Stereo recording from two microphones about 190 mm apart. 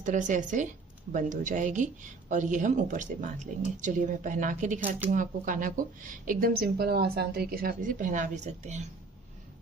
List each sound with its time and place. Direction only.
0.0 s speech: 40° right (ahead or behind)